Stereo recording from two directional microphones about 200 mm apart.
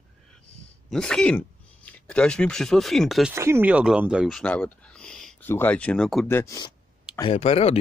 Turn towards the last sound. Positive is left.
turn(degrees=30)  # may be behind; listen again after turning